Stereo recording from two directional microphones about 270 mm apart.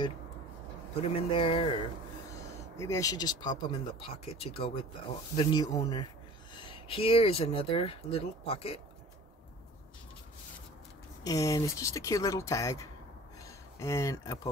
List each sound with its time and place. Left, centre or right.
1.0 s speech: centre
2.8 s speech: centre
11.2 s speech: centre